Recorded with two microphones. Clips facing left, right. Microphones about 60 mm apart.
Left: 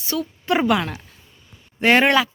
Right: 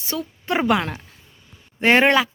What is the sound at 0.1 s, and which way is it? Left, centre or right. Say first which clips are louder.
A woman's voice: left 3 dB; right.